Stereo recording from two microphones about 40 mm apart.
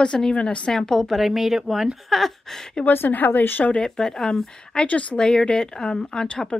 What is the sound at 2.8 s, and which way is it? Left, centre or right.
Speech, left.